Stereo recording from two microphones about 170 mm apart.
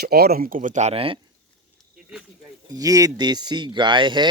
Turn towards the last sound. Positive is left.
turn(degrees=-30)  # may be behind; listen again after turning